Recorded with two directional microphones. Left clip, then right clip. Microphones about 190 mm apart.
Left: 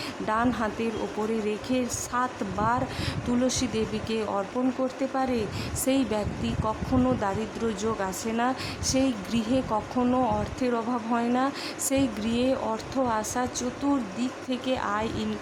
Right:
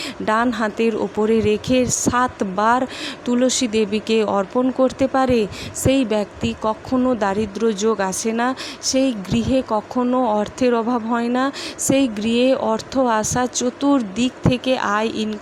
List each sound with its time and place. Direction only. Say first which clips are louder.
0.3 s speech: right 8 dB; 25° right (ahead or behind)